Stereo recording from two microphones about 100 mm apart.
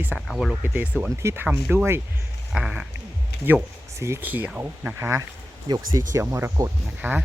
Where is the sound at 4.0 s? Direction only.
25° right (ahead or behind).